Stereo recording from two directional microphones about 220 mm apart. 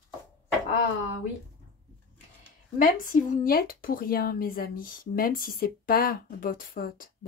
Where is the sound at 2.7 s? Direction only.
40° left (ahead or behind).